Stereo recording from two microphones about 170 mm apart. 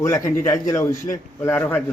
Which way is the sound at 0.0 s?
15° left (ahead or behind).